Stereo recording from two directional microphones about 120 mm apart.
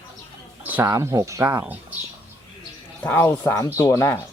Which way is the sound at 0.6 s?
15° right (ahead or behind).